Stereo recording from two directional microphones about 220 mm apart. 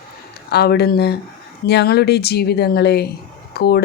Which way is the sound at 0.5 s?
45° left (ahead or behind).